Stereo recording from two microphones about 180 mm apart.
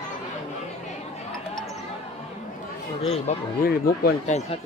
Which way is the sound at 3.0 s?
35° left (ahead or behind).